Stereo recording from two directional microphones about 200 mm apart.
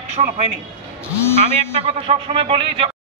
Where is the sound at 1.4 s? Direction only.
30° right (ahead or behind).